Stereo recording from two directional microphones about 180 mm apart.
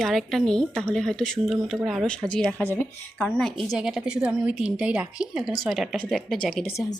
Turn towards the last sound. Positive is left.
turn(degrees=0)  # may be behind; listen again after turning